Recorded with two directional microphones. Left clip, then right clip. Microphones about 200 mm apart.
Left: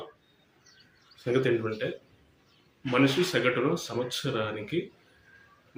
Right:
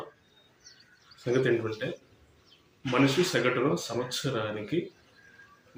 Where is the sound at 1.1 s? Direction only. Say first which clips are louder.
Even; 15° left (ahead or behind).